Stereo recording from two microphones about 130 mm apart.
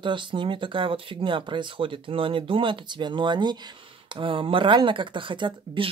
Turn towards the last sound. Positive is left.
turn(degrees=-40)  # may be behind; listen again after turning